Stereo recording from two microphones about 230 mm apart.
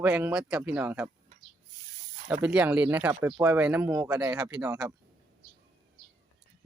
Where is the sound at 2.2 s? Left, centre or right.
Centre.